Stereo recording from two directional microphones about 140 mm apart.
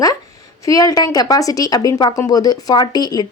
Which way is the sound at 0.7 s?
25° left (ahead or behind).